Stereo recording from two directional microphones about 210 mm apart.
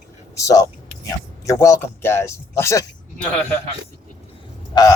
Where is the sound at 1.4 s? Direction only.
15° left (ahead or behind).